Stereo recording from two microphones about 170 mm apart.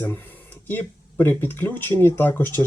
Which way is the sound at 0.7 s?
10° left (ahead or behind).